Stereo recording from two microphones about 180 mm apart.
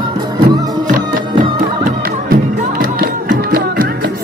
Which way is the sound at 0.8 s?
45° right (ahead or behind).